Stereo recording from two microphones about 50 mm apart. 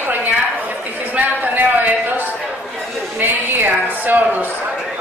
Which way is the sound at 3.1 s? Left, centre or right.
Right.